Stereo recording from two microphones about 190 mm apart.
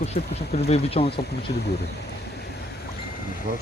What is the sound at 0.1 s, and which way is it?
Speech, 35° left (ahead or behind).